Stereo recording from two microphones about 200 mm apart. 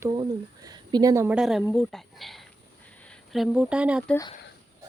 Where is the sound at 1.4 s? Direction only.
5° right (ahead or behind).